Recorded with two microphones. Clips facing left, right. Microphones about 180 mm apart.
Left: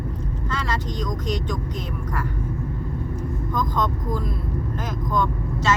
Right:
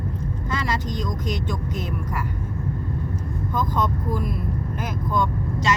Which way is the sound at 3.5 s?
10° right (ahead or behind).